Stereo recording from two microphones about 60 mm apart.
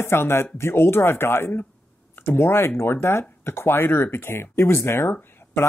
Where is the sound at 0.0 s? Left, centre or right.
Left.